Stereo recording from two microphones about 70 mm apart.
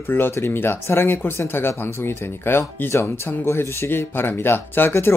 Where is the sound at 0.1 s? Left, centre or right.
Left.